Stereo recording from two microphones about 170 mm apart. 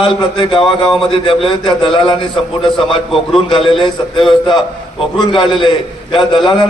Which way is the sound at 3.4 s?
30° left (ahead or behind).